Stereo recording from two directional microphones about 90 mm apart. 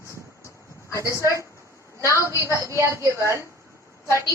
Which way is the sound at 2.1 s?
35° left (ahead or behind).